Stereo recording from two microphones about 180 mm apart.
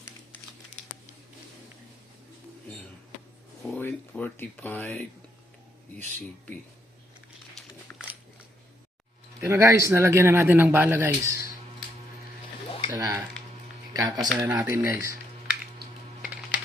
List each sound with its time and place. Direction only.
3.6 s a sound: 5° left (ahead or behind)
4.1 s speech: 10° left (ahead or behind)
7.5 s a sound: 5° left (ahead or behind)
9.4 s speech: 15° right (ahead or behind)
12.9 s speech: 15° right (ahead or behind)
16.2 s typing: 5° right (ahead or behind)